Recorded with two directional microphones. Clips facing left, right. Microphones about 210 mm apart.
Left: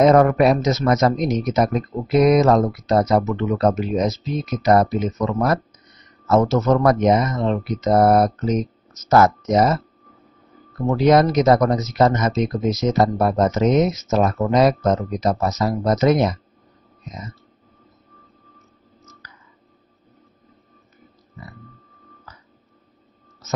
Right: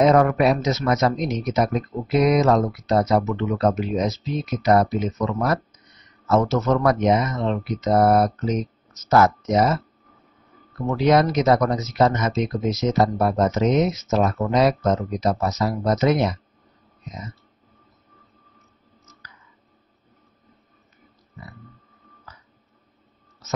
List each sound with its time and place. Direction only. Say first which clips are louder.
0.0 s speech: left 3 dB; 45° left (ahead or behind)
11.0 s speech: left 3 dB; 40° left (ahead or behind)